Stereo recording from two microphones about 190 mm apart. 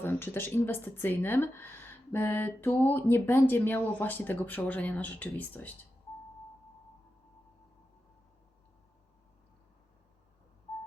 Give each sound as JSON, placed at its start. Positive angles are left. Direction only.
{"t": 0.0, "sound": "speech", "side_deg": 10}